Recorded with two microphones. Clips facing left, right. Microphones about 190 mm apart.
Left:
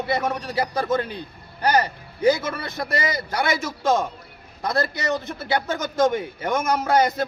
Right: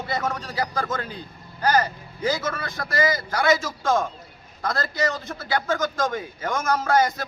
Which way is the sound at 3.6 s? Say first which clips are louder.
Left 2 dB; 20° left (ahead or behind).